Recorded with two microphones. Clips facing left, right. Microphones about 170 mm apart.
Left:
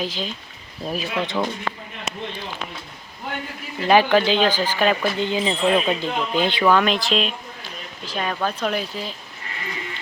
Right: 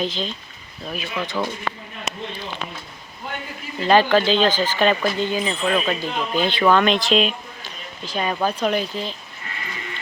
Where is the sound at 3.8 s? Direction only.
15° left (ahead or behind).